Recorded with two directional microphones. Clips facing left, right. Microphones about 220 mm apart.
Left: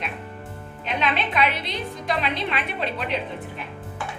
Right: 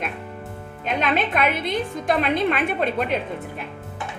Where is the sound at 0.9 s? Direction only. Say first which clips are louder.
Right 3 dB; 45° right (ahead or behind).